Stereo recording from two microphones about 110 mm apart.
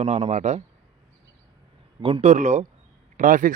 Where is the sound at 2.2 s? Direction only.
90° right.